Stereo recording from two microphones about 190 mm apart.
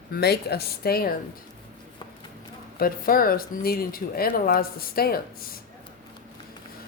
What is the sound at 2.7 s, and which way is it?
Speech, 50° left (ahead or behind).